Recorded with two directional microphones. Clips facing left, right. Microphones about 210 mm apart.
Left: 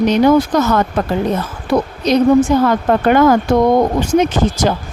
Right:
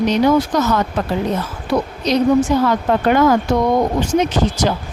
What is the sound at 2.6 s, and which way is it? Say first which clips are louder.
Speech: left 3 dB; 55° left (ahead or behind).